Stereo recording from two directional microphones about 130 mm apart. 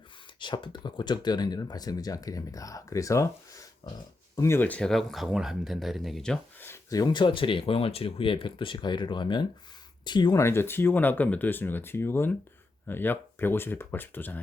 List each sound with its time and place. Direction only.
0.3 s speech: 35° left (ahead or behind)
4.4 s speech: 20° left (ahead or behind); by 6.4 s 5° left (ahead or behind)
6.9 s speech: 35° left (ahead or behind)
10.3 s speech: 20° left (ahead or behind)